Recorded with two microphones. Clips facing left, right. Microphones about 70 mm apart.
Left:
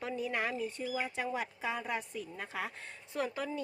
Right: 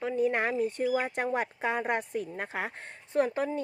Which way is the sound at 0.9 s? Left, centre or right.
Right.